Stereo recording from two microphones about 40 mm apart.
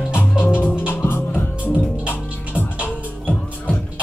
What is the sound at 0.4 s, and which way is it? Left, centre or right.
Music, left.